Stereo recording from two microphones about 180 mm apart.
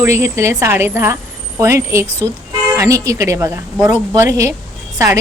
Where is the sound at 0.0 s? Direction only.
15° right (ahead or behind).